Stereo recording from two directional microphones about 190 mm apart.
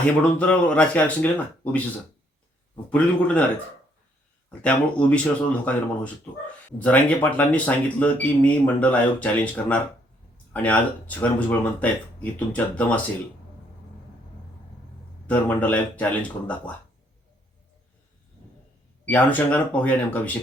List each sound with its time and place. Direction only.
0.0 s speech: 5° left (ahead or behind)
2.9 s speech: 5° left (ahead or behind)
4.6 s speech: 5° left (ahead or behind)
15.3 s speech: 10° left (ahead or behind)
19.0 s speech: 10° left (ahead or behind)